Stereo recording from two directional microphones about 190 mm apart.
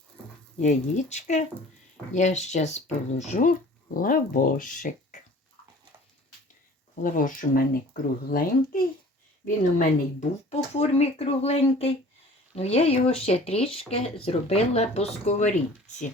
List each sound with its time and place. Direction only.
0.6 s speech: 40° left (ahead or behind)
7.0 s speech: 45° left (ahead or behind)
9.7 s speech: 35° left (ahead or behind)